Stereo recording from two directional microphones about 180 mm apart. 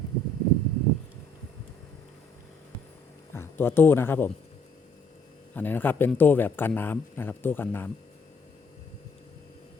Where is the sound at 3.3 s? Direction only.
10° left (ahead or behind).